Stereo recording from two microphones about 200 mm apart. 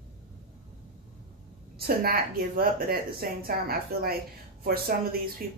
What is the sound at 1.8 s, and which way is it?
A woman's voice, 50° right (ahead or behind).